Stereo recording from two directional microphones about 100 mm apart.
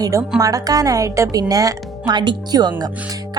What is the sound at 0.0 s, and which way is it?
A woman's voice, 30° right (ahead or behind).